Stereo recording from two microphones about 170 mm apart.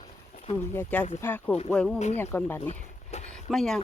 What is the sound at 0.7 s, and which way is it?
Speech, 10° left (ahead or behind).